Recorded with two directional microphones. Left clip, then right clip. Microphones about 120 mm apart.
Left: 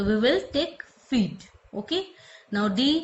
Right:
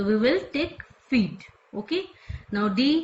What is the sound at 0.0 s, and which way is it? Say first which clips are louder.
Speech: even; 75° left (ahead or behind).